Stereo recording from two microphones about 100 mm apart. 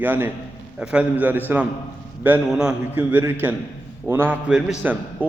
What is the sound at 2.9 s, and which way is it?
A man's voice, 20° right (ahead or behind).